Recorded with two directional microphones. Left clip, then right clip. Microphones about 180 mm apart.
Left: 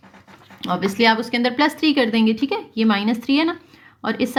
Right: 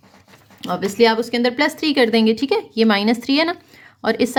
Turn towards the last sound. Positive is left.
turn(degrees=-35)  # may be behind; listen again after turning